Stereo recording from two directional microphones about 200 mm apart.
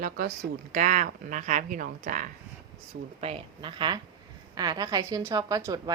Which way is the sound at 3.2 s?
30° right (ahead or behind).